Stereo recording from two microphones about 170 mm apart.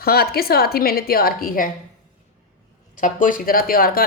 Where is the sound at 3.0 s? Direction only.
50° left (ahead or behind).